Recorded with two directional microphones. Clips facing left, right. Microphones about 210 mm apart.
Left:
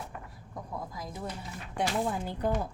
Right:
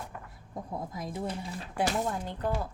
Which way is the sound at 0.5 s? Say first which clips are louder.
Right 2 dB; 25° right (ahead or behind).